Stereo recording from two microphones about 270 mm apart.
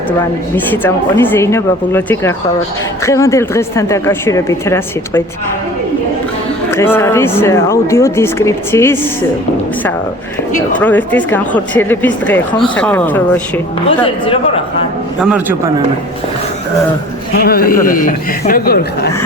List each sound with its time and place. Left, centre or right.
0.5 s speech: centre
6.7 s speech: centre
10.8 s speech: centre
14.0 s speech: centre
15.2 s speech: centre
17.3 s a man's voice: left